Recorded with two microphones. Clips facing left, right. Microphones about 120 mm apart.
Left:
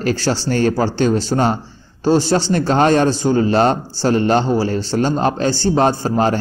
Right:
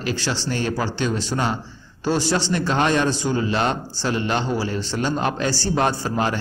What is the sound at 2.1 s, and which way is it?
A man's voice, 30° left (ahead or behind).